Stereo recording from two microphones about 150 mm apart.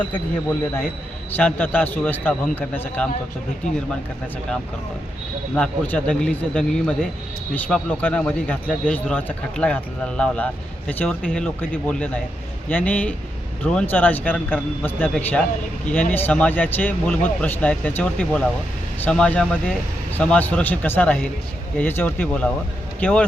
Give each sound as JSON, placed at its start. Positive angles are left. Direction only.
{"t": 1.4, "sound": "speech", "side_deg": 10}
{"t": 3.6, "sound": "speech", "side_deg": 55}
{"t": 5.5, "sound": "speech", "side_deg": 5}